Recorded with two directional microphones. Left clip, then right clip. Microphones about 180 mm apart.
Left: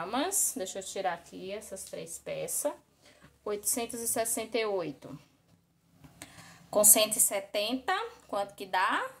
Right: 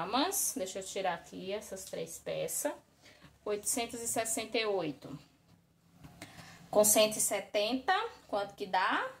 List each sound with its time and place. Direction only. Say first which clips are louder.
0.0 s a woman's voice: even; 25° left (ahead or behind)
6.7 s a woman's voice: even; 30° left (ahead or behind)